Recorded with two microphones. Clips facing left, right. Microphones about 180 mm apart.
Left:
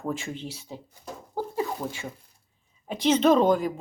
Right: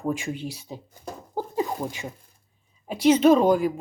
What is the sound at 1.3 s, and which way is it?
Zipper, 15° right (ahead or behind).